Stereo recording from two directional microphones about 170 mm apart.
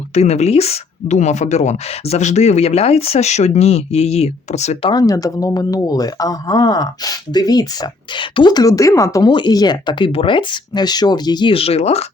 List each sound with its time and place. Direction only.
0.1 s speech: 40° left (ahead or behind)
4.9 s speech: 20° left (ahead or behind); by 12.0 s 40° left (ahead or behind)